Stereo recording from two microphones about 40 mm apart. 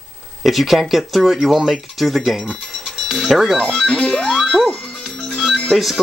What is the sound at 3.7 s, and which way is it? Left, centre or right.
Speech, centre.